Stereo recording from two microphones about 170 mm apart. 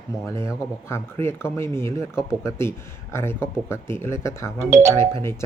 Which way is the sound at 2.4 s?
15° left (ahead or behind).